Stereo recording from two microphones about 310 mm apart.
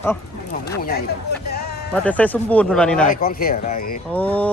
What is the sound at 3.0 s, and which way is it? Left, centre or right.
Speech, left.